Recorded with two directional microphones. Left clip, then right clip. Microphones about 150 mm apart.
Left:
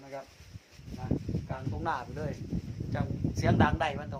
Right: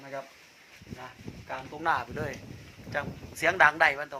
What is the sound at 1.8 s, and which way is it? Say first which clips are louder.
Speech: right 6 dB; 20° right (ahead or behind).